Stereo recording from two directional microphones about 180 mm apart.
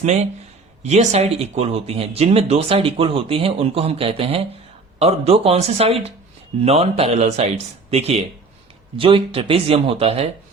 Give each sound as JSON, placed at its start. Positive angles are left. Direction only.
{"t": 0.0, "sound": "speech", "side_deg": -40}